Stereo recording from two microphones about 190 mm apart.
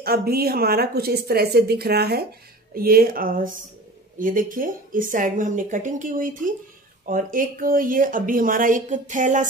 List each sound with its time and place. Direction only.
0.0 s a woman's voice: 55° right (ahead or behind)